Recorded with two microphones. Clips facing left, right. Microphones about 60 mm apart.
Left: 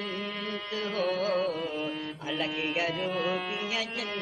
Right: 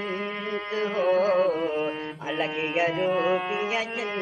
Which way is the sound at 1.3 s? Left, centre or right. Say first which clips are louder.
Right 6 dB; right.